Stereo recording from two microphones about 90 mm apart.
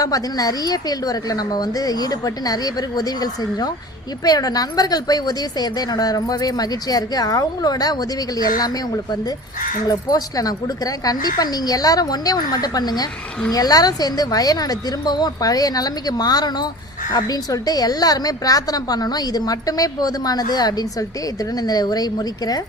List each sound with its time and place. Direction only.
0.0 s a woman's voice: 45° left (ahead or behind)
9.9 s a woman's voice: 45° left (ahead or behind)